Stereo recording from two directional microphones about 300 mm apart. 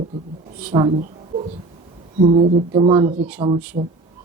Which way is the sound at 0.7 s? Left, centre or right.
Centre.